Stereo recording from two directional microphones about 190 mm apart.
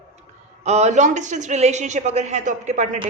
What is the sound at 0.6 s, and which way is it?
A woman's voice, 35° right (ahead or behind).